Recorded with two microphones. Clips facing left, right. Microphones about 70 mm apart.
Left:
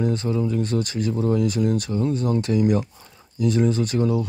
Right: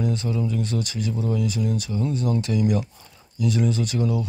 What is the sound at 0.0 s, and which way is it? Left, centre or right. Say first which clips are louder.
Speech: left 3 dB; left.